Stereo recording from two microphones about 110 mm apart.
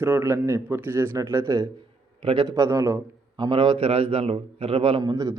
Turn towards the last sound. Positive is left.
turn(degrees=-35)  # may be behind; listen again after turning